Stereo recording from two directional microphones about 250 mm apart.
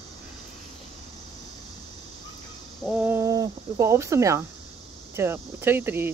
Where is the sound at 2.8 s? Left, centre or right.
Centre.